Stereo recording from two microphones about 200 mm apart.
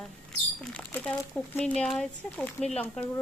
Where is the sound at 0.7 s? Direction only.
5° left (ahead or behind).